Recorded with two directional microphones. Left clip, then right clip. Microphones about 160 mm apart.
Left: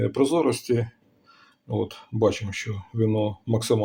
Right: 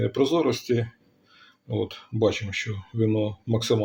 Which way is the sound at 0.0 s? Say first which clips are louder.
Left 1 dB; 10° left (ahead or behind).